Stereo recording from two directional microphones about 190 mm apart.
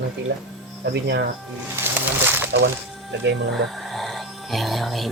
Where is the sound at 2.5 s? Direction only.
65° right (ahead or behind).